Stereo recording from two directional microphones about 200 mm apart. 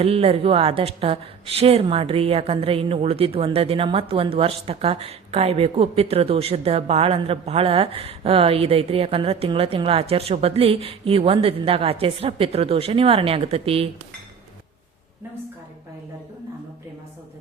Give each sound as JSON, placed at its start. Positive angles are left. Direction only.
{"t": 0.0, "sound": "a woman's voice", "side_deg": -30}